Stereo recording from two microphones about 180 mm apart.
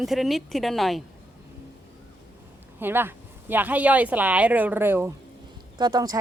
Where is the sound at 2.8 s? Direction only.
10° right (ahead or behind).